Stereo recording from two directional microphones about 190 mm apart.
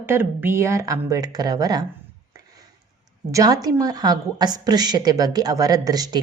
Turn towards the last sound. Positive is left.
turn(degrees=-20)  # may be behind; listen again after turning